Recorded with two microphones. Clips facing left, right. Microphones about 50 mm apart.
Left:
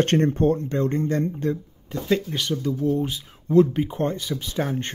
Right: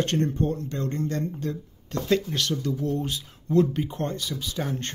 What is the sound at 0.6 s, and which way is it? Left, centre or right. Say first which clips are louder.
Speech: left 6 dB; left.